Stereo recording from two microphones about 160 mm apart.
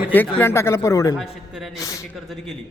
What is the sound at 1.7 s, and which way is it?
Speech, 20° left (ahead or behind).